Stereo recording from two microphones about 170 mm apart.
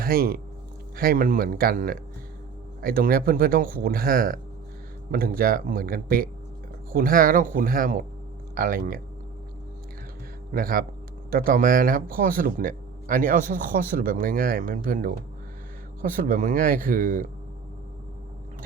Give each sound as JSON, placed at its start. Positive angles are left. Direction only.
{"t": 0.0, "sound": "a man's voice", "side_deg": -60}
{"t": 10.5, "sound": "a man's voice", "side_deg": -60}